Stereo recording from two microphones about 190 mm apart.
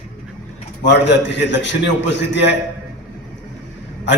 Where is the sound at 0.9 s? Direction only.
65° left (ahead or behind).